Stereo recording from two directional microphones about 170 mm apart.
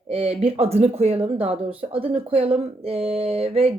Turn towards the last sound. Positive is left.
turn(degrees=-35)  # may be behind; listen again after turning